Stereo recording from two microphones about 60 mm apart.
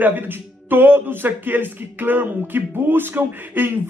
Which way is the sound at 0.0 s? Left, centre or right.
Right.